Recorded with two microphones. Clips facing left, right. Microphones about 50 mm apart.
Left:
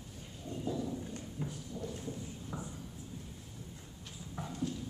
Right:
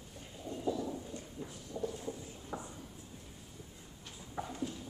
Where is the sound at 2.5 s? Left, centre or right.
Centre.